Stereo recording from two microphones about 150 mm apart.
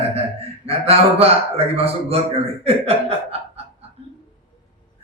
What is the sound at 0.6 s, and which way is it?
A man's voice, 40° right (ahead or behind).